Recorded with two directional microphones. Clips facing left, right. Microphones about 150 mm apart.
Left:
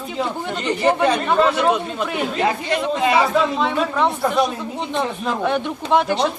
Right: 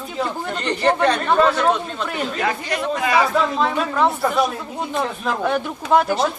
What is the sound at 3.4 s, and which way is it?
A man's voice, centre (ahead or behind).